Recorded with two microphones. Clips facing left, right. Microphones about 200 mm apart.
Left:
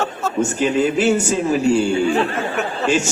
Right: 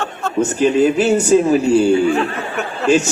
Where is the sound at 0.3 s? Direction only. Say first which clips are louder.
Right 4 dB; 40° right (ahead or behind).